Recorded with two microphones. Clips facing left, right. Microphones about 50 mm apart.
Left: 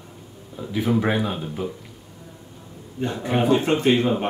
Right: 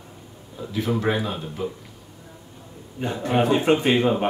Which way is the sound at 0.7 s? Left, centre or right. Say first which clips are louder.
Left 2 dB; centre.